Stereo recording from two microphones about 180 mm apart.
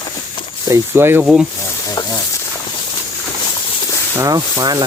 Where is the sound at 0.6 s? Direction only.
15° right (ahead or behind).